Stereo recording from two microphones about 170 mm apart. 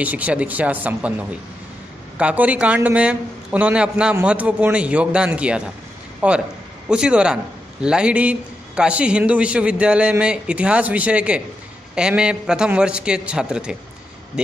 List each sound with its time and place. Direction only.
0.0 s a man's voice: 10° right (ahead or behind)
2.1 s a man's voice: 10° right (ahead or behind)